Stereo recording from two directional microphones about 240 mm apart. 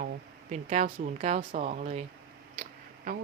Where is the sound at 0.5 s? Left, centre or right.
Right.